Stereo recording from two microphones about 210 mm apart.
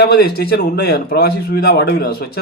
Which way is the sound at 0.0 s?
50° left (ahead or behind).